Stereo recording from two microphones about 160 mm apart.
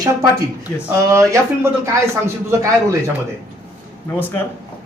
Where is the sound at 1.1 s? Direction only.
20° right (ahead or behind).